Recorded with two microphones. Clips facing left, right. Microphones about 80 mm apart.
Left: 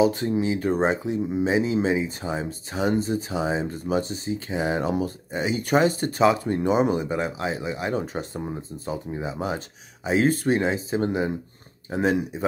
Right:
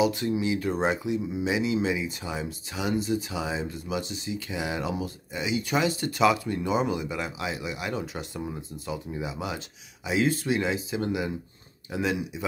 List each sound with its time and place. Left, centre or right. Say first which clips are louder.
0.0 s speech: left 4 dB; left